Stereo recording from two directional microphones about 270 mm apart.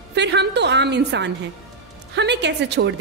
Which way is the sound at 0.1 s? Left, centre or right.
Right.